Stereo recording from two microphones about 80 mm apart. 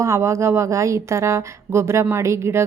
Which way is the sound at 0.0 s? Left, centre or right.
Right.